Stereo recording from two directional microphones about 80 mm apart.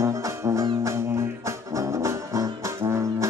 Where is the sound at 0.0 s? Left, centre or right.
Right.